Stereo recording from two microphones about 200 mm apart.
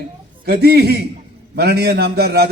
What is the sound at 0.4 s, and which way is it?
A man's voice, 55° right (ahead or behind).